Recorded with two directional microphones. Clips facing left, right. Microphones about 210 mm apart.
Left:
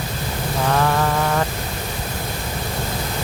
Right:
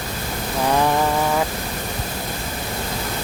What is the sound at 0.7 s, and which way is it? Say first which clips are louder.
Speech: right 1 dB; 15° right (ahead or behind).